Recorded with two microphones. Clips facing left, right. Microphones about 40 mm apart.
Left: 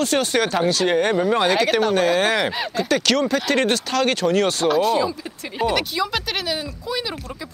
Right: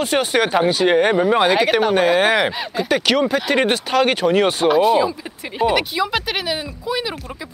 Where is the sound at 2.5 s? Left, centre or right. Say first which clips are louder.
Right 1 dB; centre.